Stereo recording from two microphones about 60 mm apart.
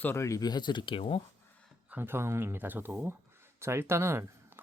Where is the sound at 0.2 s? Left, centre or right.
Left.